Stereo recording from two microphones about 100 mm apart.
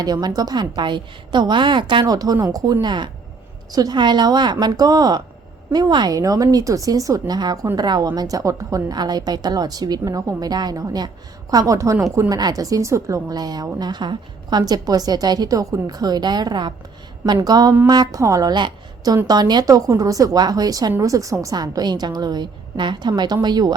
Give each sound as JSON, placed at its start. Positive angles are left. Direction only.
{"t": 0.0, "sound": "a woman's voice", "side_deg": -40}
{"t": 2.1, "sound": "a woman's voice", "side_deg": -40}